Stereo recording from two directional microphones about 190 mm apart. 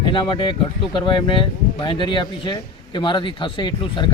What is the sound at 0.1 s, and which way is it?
A man's voice, 25° left (ahead or behind).